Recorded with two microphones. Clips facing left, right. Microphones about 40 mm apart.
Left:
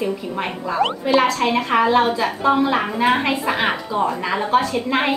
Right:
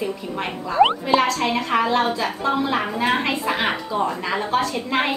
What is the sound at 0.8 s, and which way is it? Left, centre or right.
Speech, right.